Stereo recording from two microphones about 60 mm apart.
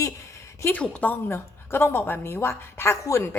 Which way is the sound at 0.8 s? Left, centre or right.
Left.